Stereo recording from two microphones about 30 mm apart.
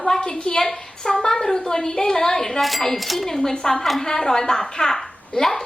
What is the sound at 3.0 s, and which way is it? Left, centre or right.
Speech, centre.